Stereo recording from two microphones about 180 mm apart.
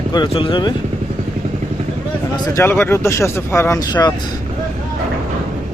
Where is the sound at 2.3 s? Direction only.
15° left (ahead or behind).